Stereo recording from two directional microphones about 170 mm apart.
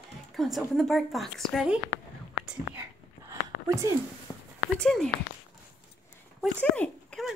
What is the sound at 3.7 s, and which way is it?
Speech, 15° right (ahead or behind).